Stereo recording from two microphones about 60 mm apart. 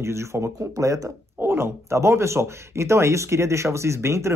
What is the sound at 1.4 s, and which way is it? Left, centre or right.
Speech, right.